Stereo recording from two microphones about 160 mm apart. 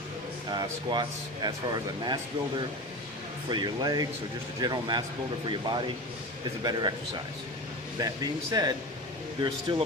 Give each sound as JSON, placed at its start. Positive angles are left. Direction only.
{"t": 0.5, "sound": "speech", "side_deg": -25}
{"t": 3.5, "sound": "speech", "side_deg": -25}
{"t": 7.9, "sound": "speech", "side_deg": -25}